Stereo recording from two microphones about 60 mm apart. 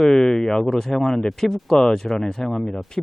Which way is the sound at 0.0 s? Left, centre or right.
Centre.